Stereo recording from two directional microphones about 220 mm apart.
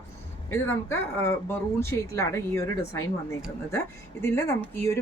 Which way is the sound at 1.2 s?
10° left (ahead or behind).